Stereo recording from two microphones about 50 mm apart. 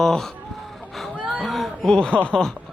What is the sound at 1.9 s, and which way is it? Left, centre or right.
Speech, centre.